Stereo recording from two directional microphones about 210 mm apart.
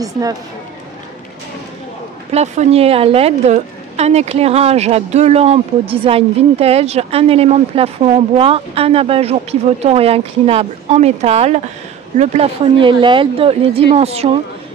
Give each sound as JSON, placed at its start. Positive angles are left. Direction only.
{"t": 0.0, "sound": "speech", "side_deg": -15}
{"t": 2.3, "sound": "a woman's voice", "side_deg": -35}